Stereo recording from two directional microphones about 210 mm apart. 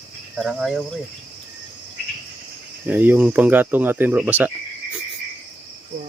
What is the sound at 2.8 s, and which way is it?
Speech, 10° right (ahead or behind).